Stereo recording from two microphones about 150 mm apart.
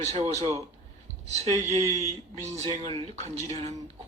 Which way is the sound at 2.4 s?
50° right (ahead or behind).